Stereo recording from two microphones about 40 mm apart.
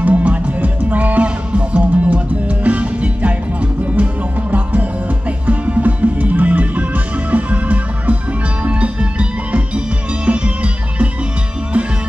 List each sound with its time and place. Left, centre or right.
0.0 s music: right